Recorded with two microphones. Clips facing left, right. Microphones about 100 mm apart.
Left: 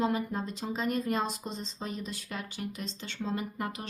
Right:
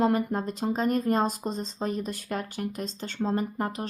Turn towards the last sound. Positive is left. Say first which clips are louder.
# right 6 dB
turn(degrees=-40)  # may be behind; listen again after turning